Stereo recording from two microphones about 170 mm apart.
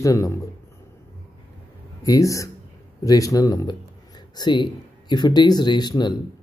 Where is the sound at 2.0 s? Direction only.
20° left (ahead or behind).